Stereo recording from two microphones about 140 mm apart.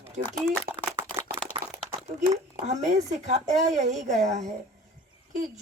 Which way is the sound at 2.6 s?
55° right (ahead or behind).